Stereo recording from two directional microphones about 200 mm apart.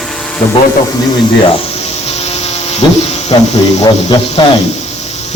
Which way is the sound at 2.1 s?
30° left (ahead or behind).